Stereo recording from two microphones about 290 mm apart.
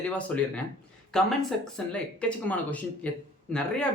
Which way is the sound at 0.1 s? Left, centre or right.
Centre.